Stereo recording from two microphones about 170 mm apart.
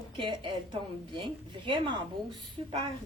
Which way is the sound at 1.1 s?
30° right (ahead or behind).